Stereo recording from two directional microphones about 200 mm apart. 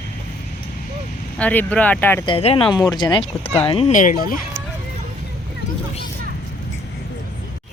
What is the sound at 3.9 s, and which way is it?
Speech, 40° left (ahead or behind).